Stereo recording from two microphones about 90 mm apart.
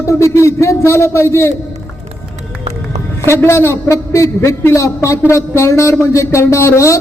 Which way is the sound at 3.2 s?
30° left (ahead or behind).